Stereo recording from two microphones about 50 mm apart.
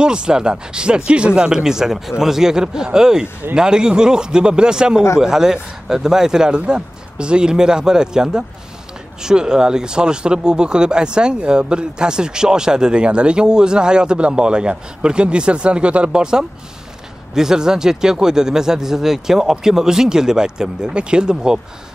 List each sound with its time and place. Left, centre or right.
0.0 s speech: centre